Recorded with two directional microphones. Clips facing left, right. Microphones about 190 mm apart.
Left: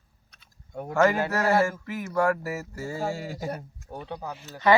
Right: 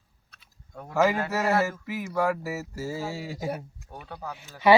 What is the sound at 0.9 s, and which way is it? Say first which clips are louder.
Speech: left 1 dB; 5° right (ahead or behind).